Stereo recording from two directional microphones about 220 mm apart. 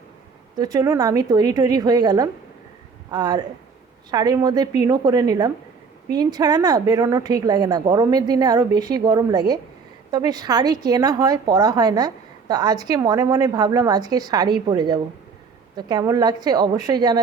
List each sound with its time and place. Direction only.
0.5 s a woman's voice: 15° right (ahead or behind)